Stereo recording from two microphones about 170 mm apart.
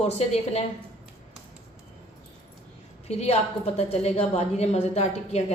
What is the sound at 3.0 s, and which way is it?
A woman's voice, 40° left (ahead or behind).